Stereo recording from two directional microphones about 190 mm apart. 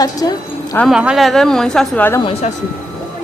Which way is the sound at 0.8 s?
Centre (ahead or behind).